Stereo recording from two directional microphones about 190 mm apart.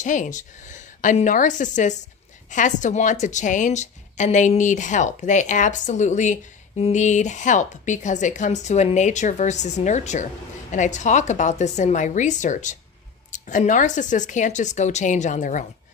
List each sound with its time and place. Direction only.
0.0 s a woman's voice: 40° left (ahead or behind)